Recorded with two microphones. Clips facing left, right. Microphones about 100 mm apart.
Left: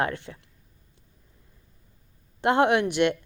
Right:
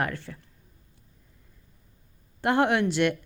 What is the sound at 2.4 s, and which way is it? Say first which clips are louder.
Speech: left 2 dB; 20° left (ahead or behind).